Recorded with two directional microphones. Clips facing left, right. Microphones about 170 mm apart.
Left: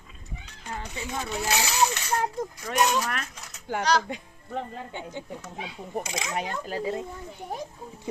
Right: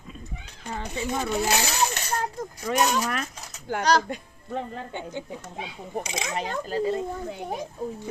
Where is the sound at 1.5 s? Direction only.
50° right (ahead or behind).